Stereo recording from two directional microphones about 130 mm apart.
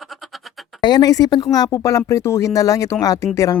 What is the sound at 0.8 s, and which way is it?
Speech, 30° left (ahead or behind).